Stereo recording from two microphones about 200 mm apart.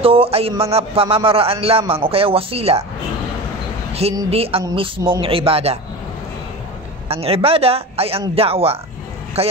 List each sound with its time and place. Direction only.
0.0 s a man's voice: 30° right (ahead or behind)
4.1 s a man's voice: 25° right (ahead or behind)
7.1 s a man's voice: 30° right (ahead or behind)